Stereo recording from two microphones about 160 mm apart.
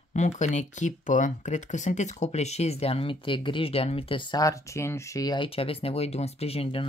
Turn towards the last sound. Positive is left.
turn(degrees=35)  # may be behind; listen again after turning